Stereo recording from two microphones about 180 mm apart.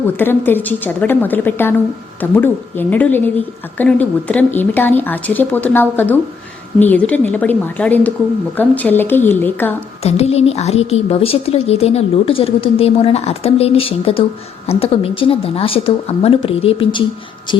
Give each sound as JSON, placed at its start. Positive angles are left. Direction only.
{"t": 0.2, "sound": "a woman's voice", "side_deg": 10}
{"t": 10.0, "sound": "speech", "side_deg": 35}